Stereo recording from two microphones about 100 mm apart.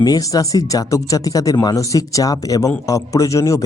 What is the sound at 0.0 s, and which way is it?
Speech, 40° left (ahead or behind).